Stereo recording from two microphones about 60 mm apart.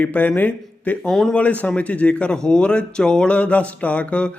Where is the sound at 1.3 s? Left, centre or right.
Left.